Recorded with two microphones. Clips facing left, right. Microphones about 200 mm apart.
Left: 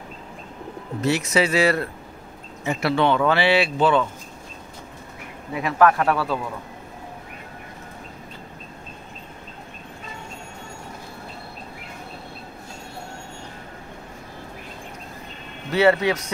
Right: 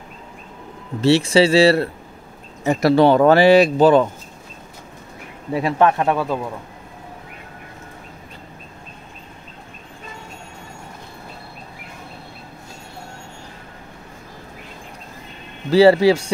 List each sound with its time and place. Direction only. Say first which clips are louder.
1.0 s speech: right 7 dB; 30° right (ahead or behind)
5.5 s speech: right 2 dB; 30° right (ahead or behind)
15.7 s speech: right 7 dB; 30° right (ahead or behind)